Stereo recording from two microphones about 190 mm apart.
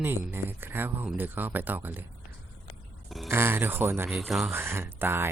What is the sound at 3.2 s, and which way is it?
Speech, 10° right (ahead or behind).